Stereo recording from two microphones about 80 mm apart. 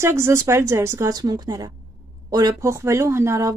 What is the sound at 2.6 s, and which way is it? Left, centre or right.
Speech, right.